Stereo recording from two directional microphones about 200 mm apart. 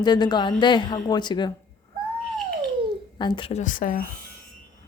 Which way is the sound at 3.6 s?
40° left (ahead or behind).